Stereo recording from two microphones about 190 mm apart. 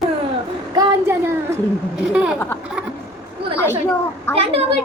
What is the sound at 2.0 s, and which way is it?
Speech, 5° right (ahead or behind).